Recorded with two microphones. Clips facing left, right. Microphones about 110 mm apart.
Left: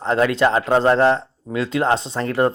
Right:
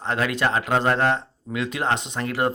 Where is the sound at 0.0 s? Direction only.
25° left (ahead or behind).